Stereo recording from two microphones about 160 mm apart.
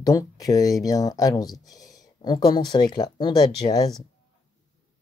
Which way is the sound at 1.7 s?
25° left (ahead or behind).